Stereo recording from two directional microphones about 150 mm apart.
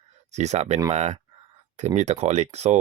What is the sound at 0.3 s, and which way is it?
Speech, 50° right (ahead or behind).